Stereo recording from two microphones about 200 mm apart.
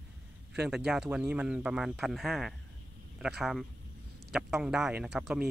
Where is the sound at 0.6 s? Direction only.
5° right (ahead or behind).